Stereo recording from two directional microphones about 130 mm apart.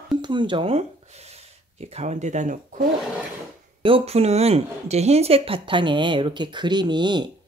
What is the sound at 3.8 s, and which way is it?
Speech, 50° right (ahead or behind).